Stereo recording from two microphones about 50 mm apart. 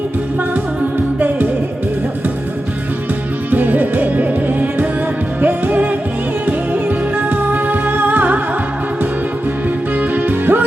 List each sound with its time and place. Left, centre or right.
3.5 s music: right
10.0 s music: right